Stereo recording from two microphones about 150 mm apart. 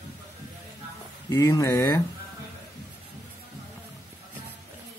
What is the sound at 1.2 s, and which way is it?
Speech, 20° left (ahead or behind).